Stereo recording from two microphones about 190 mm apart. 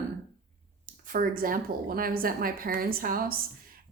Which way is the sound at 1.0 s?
45° right (ahead or behind).